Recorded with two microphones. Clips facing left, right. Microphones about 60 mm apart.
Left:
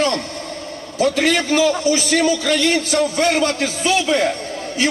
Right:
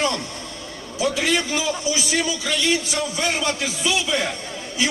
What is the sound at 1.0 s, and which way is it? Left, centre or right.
A man's voice, left.